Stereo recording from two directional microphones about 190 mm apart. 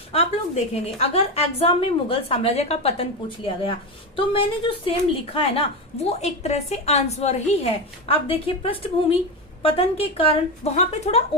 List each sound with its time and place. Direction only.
0.1 s a woman's voice: 35° left (ahead or behind)